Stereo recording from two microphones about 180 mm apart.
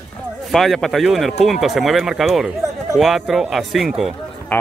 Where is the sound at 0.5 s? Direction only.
Centre (ahead or behind).